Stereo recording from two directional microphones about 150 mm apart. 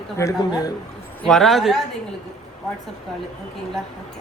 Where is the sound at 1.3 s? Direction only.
Centre (ahead or behind).